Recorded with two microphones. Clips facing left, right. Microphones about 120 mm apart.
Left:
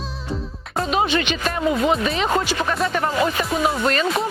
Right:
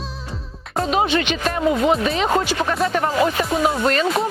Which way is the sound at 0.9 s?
45° right (ahead or behind).